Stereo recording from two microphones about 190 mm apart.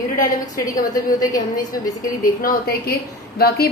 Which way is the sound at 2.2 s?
50° left (ahead or behind).